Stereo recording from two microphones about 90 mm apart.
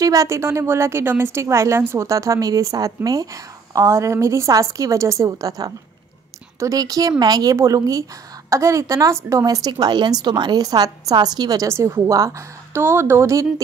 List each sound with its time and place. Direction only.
0.0 s a woman's voice: 40° right (ahead or behind)
11.7 s a woman's voice: 35° right (ahead or behind)